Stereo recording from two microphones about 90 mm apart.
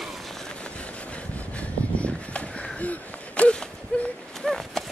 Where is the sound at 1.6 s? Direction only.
15° left (ahead or behind).